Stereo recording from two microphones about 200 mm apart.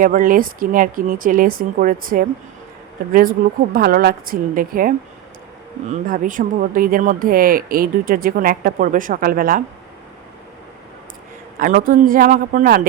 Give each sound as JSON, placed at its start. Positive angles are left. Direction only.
{"t": 0.0, "sound": "speech", "side_deg": -45}
{"t": 11.6, "sound": "speech", "side_deg": -45}